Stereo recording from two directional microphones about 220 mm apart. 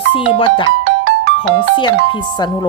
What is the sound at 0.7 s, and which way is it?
Music, 50° right (ahead or behind).